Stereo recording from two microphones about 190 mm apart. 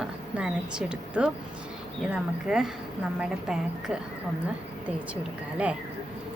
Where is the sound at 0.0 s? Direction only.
5° right (ahead or behind).